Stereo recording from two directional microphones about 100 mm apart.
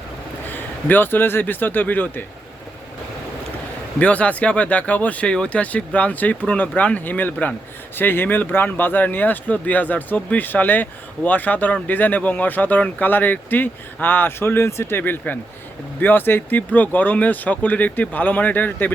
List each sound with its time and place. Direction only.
0.5 s speech: 20° left (ahead or behind)
3.9 s speech: 10° left (ahead or behind)